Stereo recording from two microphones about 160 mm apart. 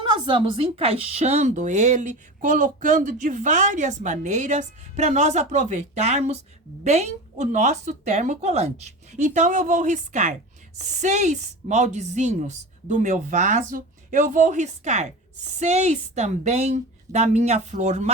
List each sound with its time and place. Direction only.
0.0 s speech: 30° right (ahead or behind)